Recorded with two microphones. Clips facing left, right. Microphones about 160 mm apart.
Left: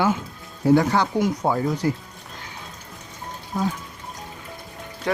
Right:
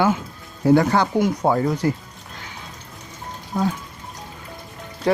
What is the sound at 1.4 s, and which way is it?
Speech, 65° right (ahead or behind).